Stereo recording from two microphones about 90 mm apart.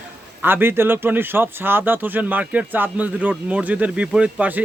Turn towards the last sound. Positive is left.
turn(degrees=-15)  # may be behind; listen again after turning